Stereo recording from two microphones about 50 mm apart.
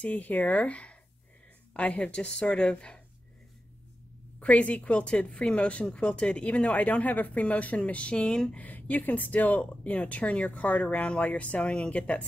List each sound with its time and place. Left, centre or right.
0.0 s a woman's voice: left
4.4 s a woman's voice: left
8.5 s a woman's voice: left